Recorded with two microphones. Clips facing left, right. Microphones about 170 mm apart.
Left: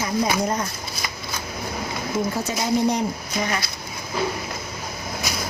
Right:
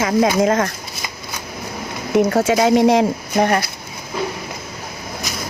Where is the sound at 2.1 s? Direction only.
75° right (ahead or behind); by 3.6 s 60° right (ahead or behind).